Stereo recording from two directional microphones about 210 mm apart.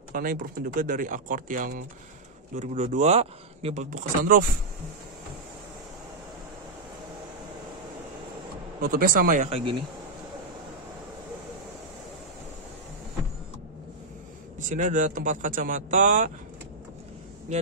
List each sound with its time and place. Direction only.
0.1 s speech: 40° right (ahead or behind)
8.8 s speech: 45° right (ahead or behind)
14.6 s speech: 35° right (ahead or behind)